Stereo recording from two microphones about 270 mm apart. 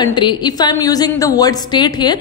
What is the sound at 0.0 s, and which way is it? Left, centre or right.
A woman's voice, centre.